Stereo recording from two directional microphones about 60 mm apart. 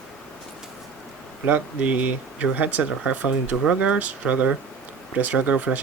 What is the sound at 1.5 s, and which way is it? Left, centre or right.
Speech, right.